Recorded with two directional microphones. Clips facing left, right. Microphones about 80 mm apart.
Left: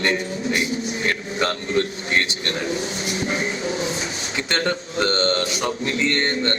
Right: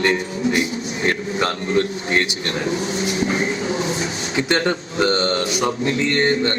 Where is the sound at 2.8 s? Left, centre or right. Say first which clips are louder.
Right 4 dB; right.